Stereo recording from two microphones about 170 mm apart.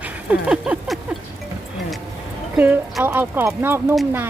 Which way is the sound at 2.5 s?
10° right (ahead or behind).